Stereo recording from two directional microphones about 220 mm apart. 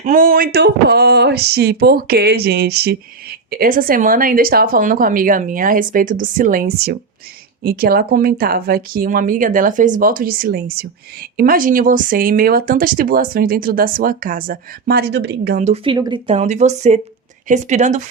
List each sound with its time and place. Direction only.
0.0 s speech: 40° right (ahead or behind)
15.6 s speech: 25° right (ahead or behind)